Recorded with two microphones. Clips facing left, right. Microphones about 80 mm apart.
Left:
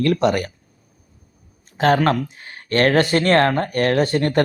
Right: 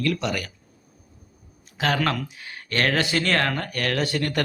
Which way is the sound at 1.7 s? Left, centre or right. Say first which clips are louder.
Left 7 dB; left.